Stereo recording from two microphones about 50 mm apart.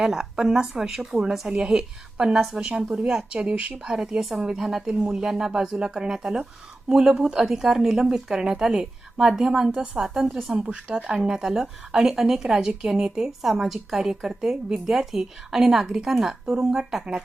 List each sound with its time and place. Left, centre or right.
0.0 s speech: centre
10.5 s speech: right